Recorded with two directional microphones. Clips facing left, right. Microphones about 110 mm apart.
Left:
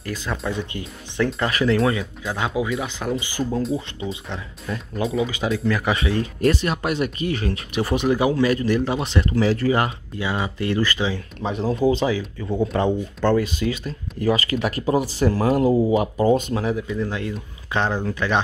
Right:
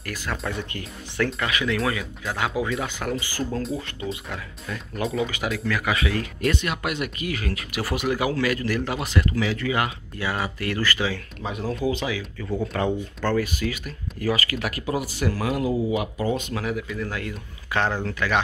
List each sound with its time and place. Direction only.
0.0 s speech: 20° left (ahead or behind)
1.4 s speech: 35° left (ahead or behind)
2.3 s speech: 20° left (ahead or behind)
5.0 s speech: centre (ahead or behind)
5.7 s speech: 30° left (ahead or behind)
10.1 s speech: 20° left (ahead or behind)